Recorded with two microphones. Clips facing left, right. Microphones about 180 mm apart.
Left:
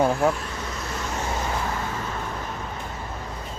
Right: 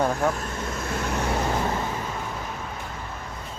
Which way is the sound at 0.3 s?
50° right (ahead or behind).